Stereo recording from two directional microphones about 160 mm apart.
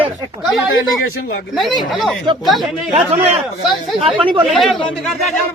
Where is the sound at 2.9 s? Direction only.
40° right (ahead or behind).